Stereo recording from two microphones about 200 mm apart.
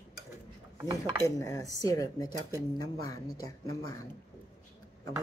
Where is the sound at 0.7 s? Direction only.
20° right (ahead or behind).